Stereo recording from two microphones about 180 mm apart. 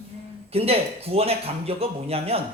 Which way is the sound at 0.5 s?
35° right (ahead or behind).